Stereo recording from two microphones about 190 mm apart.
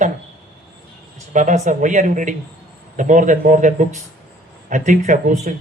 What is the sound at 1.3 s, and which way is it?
Speech, 40° right (ahead or behind).